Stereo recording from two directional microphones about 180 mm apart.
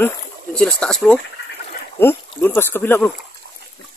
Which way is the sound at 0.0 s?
5° left (ahead or behind).